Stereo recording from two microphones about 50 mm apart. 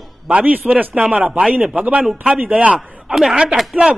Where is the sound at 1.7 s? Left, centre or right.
Right.